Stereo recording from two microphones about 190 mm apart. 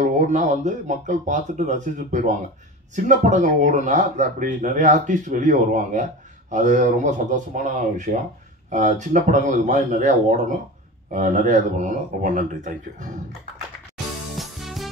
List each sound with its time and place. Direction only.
0.0 s speech: 40° right (ahead or behind)
14.3 s music: centre (ahead or behind)